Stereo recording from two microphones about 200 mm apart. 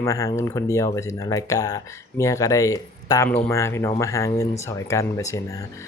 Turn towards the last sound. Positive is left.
turn(degrees=15)  # may be behind; listen again after turning